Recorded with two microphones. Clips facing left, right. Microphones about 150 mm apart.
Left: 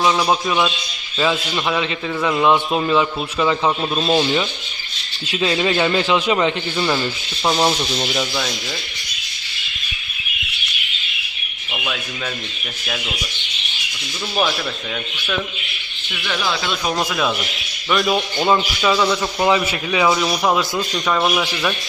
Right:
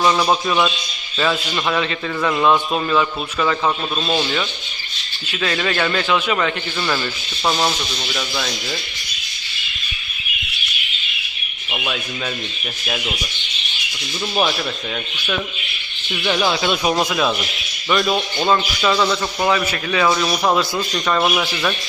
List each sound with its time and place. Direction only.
0.0 s a man's voice: 5° left (ahead or behind); by 6.5 s 25° left (ahead or behind)
6.7 s a man's voice: 10° left (ahead or behind)
7.8 s speech: 25° left (ahead or behind)
16.2 s speech: 25° right (ahead or behind)
16.8 s a man's voice: 10° right (ahead or behind)